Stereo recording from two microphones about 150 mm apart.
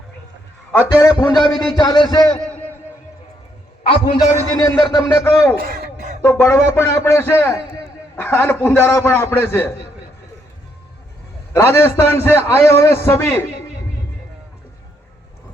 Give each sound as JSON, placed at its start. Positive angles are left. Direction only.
{"t": 0.7, "sound": "a man's voice", "side_deg": 15}
{"t": 1.1, "sound": "a man's voice", "side_deg": 25}
{"t": 2.4, "sound": "a sound", "side_deg": 10}
{"t": 3.8, "sound": "a man's voice", "side_deg": 40}
{"t": 4.8, "sound": "a man's voice", "side_deg": 25}
{"t": 5.5, "sound": "speech", "side_deg": -85}
{"t": 6.2, "sound": "a man's voice", "side_deg": 15}
{"t": 11.5, "sound": "a man's voice", "side_deg": 15}